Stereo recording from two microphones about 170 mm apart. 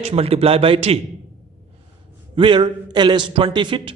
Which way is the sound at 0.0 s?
35° right (ahead or behind).